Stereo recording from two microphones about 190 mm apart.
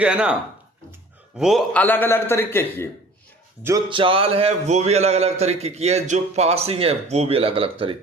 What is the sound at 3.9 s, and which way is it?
A man's voice, 25° right (ahead or behind).